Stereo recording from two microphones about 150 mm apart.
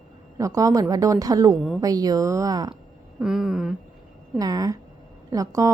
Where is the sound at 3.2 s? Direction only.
5° right (ahead or behind).